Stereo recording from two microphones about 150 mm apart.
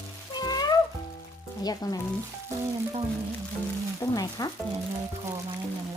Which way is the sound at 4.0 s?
25° left (ahead or behind).